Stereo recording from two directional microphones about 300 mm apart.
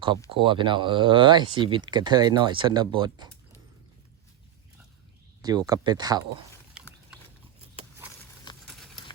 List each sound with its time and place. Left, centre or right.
0.3 s speech: centre
5.4 s speech: centre
8.5 s a sound: centre